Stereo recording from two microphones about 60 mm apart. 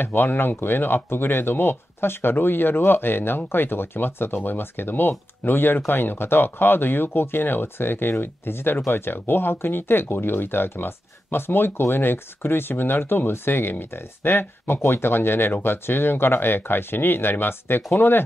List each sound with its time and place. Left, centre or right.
0.0 s speech: left